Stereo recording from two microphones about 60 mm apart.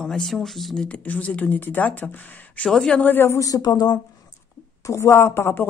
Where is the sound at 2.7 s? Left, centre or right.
Centre.